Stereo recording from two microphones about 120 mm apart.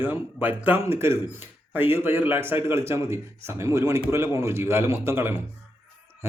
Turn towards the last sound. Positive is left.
turn(degrees=-20)  # may be behind; listen again after turning